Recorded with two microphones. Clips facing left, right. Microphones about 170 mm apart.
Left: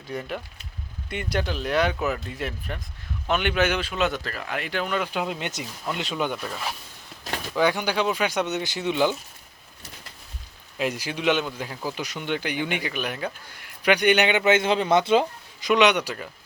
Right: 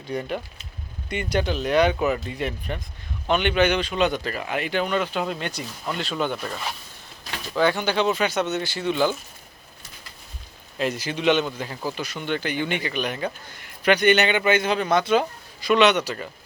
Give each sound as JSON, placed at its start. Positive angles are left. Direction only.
{"t": 0.1, "sound": "speech", "side_deg": 0}
{"t": 5.1, "sound": "speech", "side_deg": 15}
{"t": 6.4, "sound": "speech", "side_deg": 0}
{"t": 7.5, "sound": "speech", "side_deg": 15}
{"t": 10.8, "sound": "speech", "side_deg": 10}